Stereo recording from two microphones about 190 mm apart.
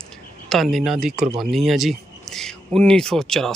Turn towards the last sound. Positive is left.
turn(degrees=0)  # may be behind; listen again after turning